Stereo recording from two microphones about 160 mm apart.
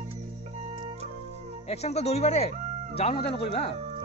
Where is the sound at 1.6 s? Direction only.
40° left (ahead or behind).